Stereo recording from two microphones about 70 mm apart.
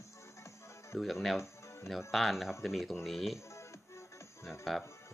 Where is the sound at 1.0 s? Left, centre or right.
Centre.